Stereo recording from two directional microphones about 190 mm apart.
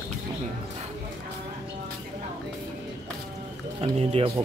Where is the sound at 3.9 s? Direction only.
30° right (ahead or behind).